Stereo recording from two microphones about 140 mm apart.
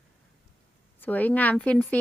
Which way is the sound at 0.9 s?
10° left (ahead or behind).